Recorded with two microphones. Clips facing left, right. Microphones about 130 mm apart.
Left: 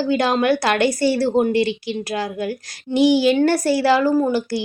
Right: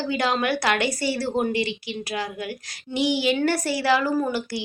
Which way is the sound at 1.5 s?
40° left (ahead or behind).